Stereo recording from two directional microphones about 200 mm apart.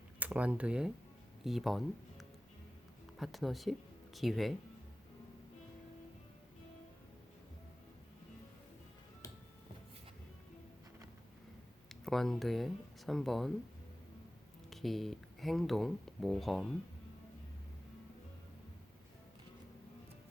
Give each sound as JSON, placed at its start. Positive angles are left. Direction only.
{"t": 0.2, "sound": "speech", "side_deg": -5}
{"t": 3.2, "sound": "speech", "side_deg": 0}
{"t": 9.2, "sound": "music", "side_deg": 20}
{"t": 11.9, "sound": "speech", "side_deg": 0}
{"t": 14.7, "sound": "speech", "side_deg": 0}